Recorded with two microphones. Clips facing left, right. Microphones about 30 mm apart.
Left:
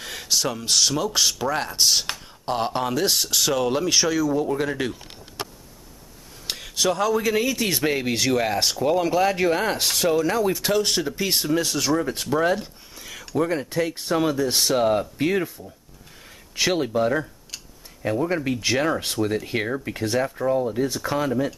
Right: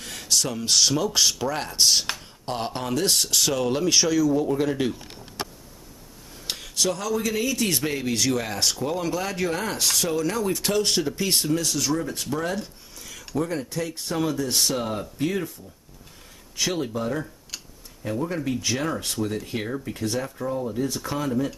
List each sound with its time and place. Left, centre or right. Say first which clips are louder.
0.0 s speech: left 1 dB; centre
6.5 s a sound: left 3 dB; centre
7.0 s speech: left 4 dB; left
11.5 s speech: left 3 dB; left
16.5 s speech: left 5 dB; left
20.2 s speech: left 6 dB; left